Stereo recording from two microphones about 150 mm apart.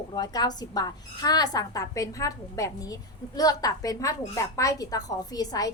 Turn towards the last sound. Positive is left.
turn(degrees=25)  # may be behind; listen again after turning